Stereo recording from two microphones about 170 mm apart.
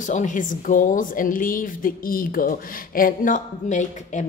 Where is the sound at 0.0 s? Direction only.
50° left (ahead or behind).